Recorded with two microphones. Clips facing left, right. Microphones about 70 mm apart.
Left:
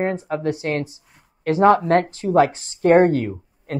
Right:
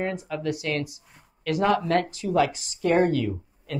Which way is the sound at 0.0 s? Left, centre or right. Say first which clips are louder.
Left 6 dB; left.